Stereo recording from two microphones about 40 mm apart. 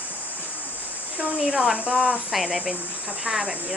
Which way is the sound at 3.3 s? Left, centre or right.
Centre.